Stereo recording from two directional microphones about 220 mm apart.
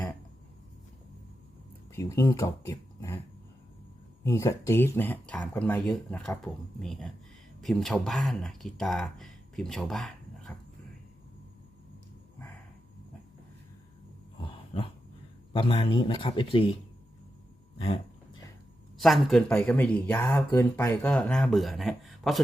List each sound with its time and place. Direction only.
1.9 s speech: 10° left (ahead or behind)
4.2 s speech: 15° left (ahead or behind)
15.5 s speech: 20° left (ahead or behind)
18.9 s speech: centre (ahead or behind)